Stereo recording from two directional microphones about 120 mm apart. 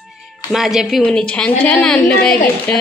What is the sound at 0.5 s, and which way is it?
Speech, 5° right (ahead or behind).